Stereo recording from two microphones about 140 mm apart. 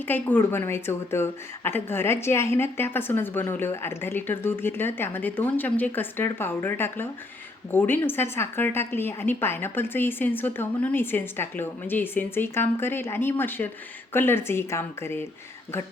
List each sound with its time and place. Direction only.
0.1 s a woman's voice: 15° left (ahead or behind)